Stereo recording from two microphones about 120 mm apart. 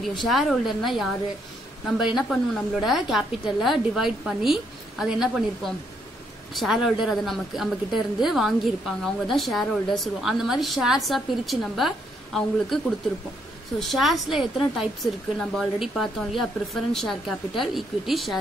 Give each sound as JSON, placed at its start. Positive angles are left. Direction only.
{"t": 0.2, "sound": "speech", "side_deg": 0}